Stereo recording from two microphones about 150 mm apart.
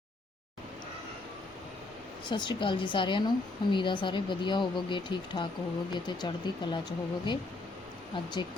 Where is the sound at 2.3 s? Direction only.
30° left (ahead or behind).